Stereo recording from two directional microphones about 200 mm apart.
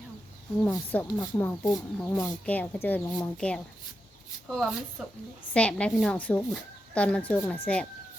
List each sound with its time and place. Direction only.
0.6 s a woman's voice: 10° left (ahead or behind)